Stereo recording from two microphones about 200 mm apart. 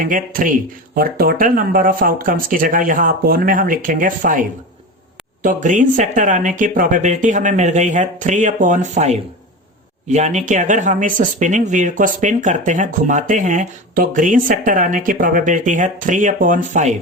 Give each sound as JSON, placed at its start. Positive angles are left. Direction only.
{"t": 0.0, "sound": "speech", "side_deg": -45}